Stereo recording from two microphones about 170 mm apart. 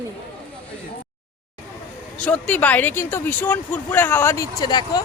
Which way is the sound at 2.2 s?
10° left (ahead or behind).